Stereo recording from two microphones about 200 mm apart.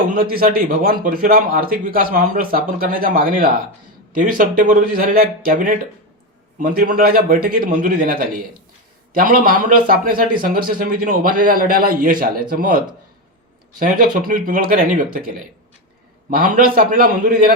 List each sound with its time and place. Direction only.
0.2 s speech: 45° right (ahead or behind)